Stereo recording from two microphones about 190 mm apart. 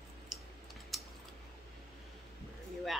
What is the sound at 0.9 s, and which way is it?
Typing, centre (ahead or behind).